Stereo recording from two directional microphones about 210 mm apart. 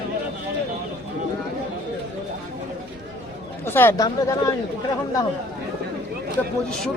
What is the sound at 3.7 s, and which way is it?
Speech, 10° left (ahead or behind).